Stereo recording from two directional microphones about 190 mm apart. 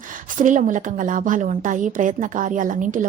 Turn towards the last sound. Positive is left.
turn(degrees=-40)  # may be behind; listen again after turning